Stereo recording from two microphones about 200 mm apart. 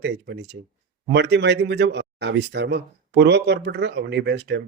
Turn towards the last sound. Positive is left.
turn(degrees=-55)  # may be behind; listen again after turning